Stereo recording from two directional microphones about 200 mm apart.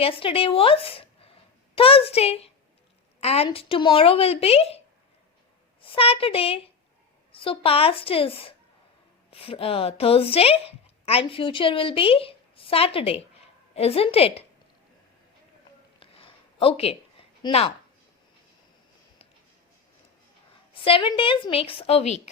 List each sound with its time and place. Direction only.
0.0 s a woman's voice: 25° left (ahead or behind)
5.8 s a woman's voice: 25° left (ahead or behind)
16.0 s a sound: 25° left (ahead or behind)
20.8 s a woman's voice: 25° left (ahead or behind)